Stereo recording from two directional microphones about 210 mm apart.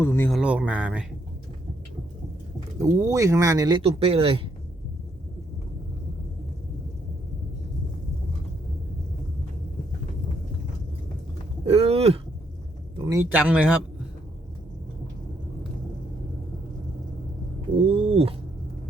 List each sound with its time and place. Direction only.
0.0 s speech: 10° left (ahead or behind)
0.3 s speech: 5° right (ahead or behind)
2.8 s speech: 15° right (ahead or behind)
11.6 s speech: 30° right (ahead or behind)
13.0 s speech: 15° right (ahead or behind)
17.8 s a sound: 25° right (ahead or behind)